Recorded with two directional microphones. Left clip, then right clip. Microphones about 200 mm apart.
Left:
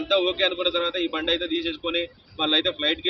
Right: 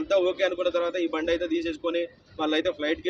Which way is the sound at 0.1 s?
10° right (ahead or behind).